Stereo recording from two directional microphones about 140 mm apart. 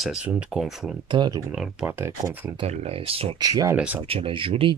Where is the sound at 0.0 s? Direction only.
5° right (ahead or behind).